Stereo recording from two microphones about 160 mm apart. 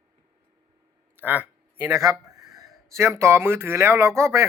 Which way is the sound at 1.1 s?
10° right (ahead or behind).